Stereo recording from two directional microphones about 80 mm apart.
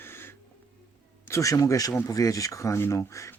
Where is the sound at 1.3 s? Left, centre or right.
Left.